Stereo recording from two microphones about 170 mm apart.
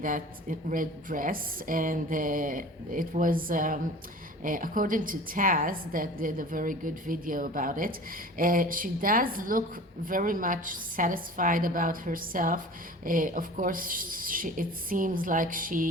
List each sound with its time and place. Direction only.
0.0 s a woman's voice: 55° right (ahead or behind)